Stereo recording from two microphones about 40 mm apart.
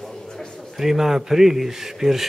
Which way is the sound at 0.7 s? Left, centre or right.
Centre.